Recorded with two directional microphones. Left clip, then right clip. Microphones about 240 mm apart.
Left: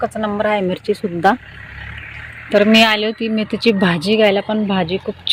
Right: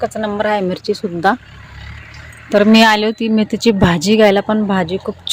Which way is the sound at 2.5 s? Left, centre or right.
Centre.